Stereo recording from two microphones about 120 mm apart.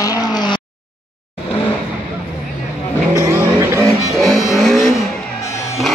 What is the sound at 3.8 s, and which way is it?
Music, centre (ahead or behind).